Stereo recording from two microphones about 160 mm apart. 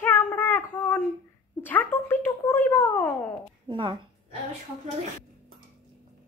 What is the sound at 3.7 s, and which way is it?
Speech, 30° right (ahead or behind).